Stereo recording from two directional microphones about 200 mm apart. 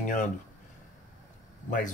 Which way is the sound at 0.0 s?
40° left (ahead or behind).